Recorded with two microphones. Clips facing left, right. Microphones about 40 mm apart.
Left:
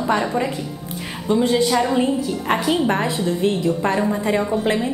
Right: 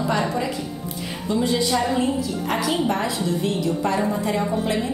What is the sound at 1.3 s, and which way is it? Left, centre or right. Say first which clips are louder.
A woman's voice: left 4 dB; left.